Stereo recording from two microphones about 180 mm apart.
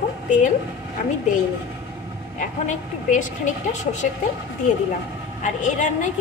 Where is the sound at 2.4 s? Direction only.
45° left (ahead or behind).